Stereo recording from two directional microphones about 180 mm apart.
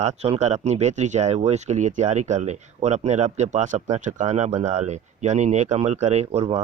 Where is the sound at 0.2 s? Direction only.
35° right (ahead or behind).